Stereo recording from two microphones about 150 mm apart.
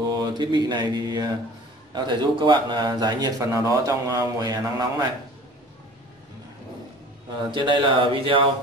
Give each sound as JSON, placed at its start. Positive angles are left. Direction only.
{"t": 0.0, "sound": "mantra", "side_deg": -25}
{"t": 2.0, "sound": "speech", "side_deg": -30}
{"t": 7.5, "sound": "speech", "side_deg": -35}